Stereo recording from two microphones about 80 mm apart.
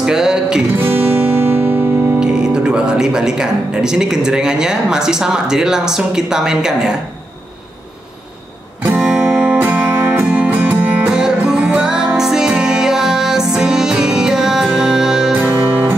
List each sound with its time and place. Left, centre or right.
0.0 s music: centre
0.7 s music: right
2.1 s speech: centre
8.8 s music: centre
11.1 s music: centre
15.4 s music: right